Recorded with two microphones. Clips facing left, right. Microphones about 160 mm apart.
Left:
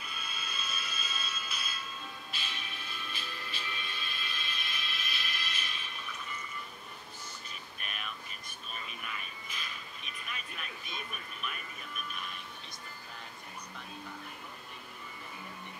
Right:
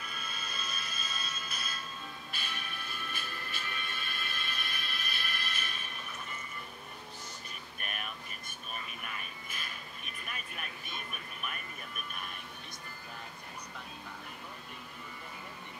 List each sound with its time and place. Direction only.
0.0 s music: 50° right (ahead or behind)
7.8 s a sound: 50° right (ahead or behind)
9.5 s vehicle: 50° right (ahead or behind)